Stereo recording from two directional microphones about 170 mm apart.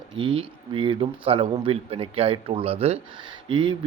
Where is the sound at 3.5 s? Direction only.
30° right (ahead or behind).